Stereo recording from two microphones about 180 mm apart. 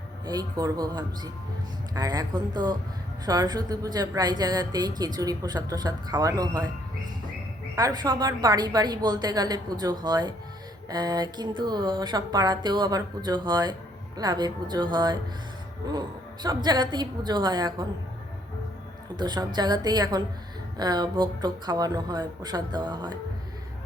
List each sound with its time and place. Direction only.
0.3 s a woman's voice: 20° right (ahead or behind)
7.8 s a woman's voice: 20° right (ahead or behind)
19.1 s a woman's voice: 25° right (ahead or behind)